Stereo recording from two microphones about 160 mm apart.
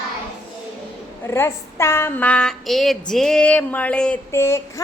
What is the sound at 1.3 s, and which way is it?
Speech, 15° left (ahead or behind).